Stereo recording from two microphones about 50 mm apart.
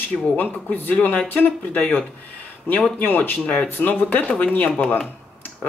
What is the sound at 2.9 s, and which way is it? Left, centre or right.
Speech, left.